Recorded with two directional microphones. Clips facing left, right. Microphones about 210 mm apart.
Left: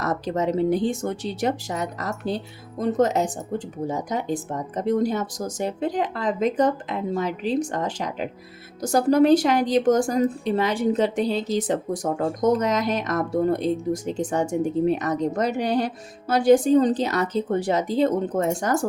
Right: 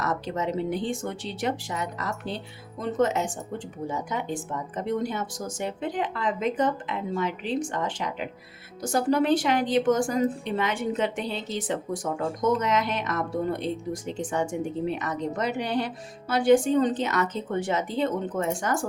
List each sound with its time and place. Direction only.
0.0 s a woman's voice: 40° left (ahead or behind)